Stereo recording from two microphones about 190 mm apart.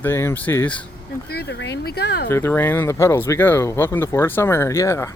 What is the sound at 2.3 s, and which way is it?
Speech, 10° left (ahead or behind).